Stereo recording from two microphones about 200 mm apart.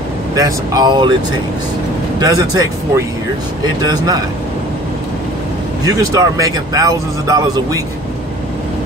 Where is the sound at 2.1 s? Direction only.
20° right (ahead or behind).